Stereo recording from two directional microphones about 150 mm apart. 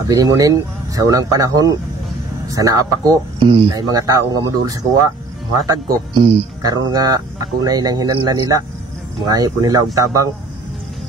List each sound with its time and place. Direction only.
0.1 s speech: 25° right (ahead or behind)
3.3 s speech: 35° right (ahead or behind)
3.7 s speech: 25° right (ahead or behind)